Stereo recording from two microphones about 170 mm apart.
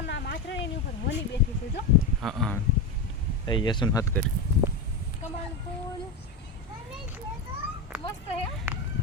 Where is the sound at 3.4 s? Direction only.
25° left (ahead or behind).